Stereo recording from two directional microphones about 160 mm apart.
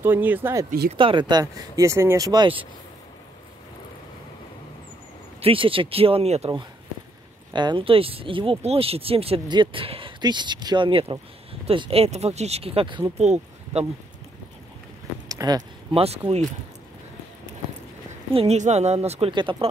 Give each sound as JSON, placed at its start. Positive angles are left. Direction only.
{"t": 0.0, "sound": "speech", "side_deg": -10}
{"t": 0.9, "sound": "speech", "side_deg": -30}
{"t": 5.4, "sound": "speech", "side_deg": -35}
{"t": 7.5, "sound": "speech", "side_deg": -30}
{"t": 13.2, "sound": "speech", "side_deg": -45}
{"t": 15.2, "sound": "a sound", "side_deg": -25}
{"t": 16.0, "sound": "speech", "side_deg": -40}
{"t": 18.3, "sound": "speech", "side_deg": -40}